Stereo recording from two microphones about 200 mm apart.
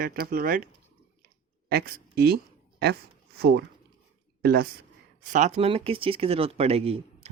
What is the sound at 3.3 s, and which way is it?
Speech, 55° right (ahead or behind).